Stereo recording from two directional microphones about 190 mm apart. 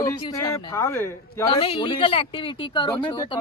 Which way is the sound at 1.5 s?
25° left (ahead or behind).